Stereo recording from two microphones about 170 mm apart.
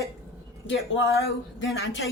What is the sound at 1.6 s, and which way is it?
Speech, 90° left.